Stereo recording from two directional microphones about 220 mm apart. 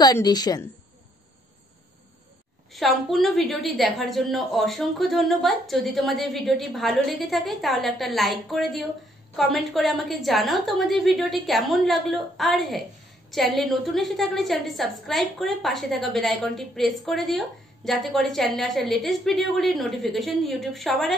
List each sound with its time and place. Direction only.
0.0 s a woman's voice: 15° left (ahead or behind)
2.7 s a woman's voice: centre (ahead or behind)